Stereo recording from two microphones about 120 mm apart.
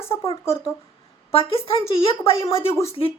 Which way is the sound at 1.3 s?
50° left (ahead or behind).